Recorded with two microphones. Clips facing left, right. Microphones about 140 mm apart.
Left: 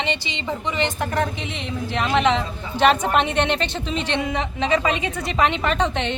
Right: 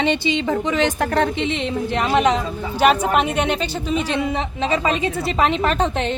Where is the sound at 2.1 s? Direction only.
40° right (ahead or behind).